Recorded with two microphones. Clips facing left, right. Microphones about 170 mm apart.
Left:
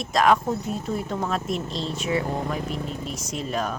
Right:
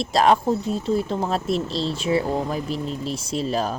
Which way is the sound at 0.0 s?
30° right (ahead or behind).